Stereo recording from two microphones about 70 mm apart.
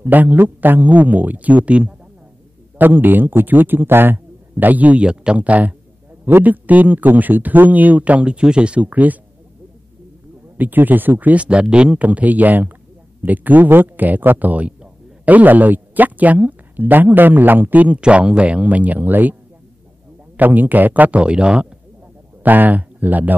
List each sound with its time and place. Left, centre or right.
0.0 s speech: right
2.8 s speech: right
10.6 s speech: right
20.3 s speech: right
22.4 s speech: right